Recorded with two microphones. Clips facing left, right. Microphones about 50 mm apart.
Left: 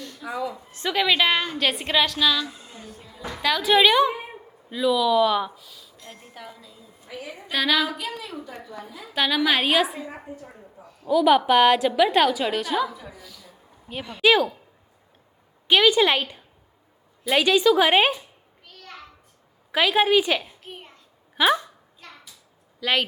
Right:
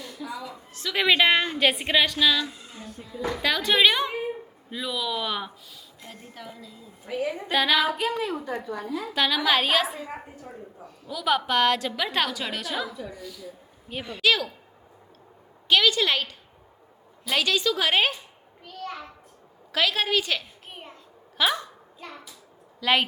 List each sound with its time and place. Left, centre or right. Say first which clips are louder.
0.5 s a woman's voice: left 5 dB; left
0.9 s a woman's voice: right 1 dB; centre
7.2 s a woman's voice: right 9 dB; right
7.5 s speech: even; centre
7.9 s a woman's voice: right 6 dB; right
9.1 s a woman's voice: left 2 dB; centre
14.2 s a woman's voice: left 5 dB; left
15.6 s a woman's voice: left 4 dB; left
19.7 s a woman's voice: left 5 dB; centre
20.7 s hands: left 1 dB; centre
21.3 s speech: left 5 dB; centre
22.0 s hands: right 4 dB; centre
22.8 s speech: right 1 dB; centre